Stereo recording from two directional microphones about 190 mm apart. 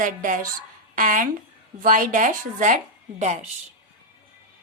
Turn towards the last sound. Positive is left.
turn(degrees=-40)  # may be behind; listen again after turning